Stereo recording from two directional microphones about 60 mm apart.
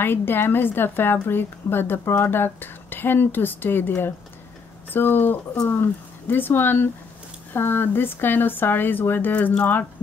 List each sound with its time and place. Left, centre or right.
0.0 s a woman's voice: left